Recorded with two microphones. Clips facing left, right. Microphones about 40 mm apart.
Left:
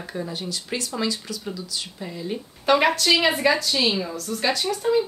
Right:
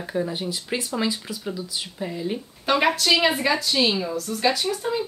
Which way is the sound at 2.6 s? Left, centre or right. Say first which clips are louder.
Left 2 dB; centre.